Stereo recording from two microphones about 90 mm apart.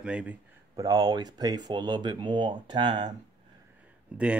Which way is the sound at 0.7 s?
45° right (ahead or behind).